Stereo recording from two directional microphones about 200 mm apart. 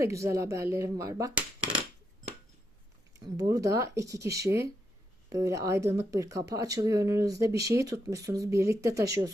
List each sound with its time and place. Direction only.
0.0 s speech: 15° right (ahead or behind)
3.2 s speech: 20° right (ahead or behind)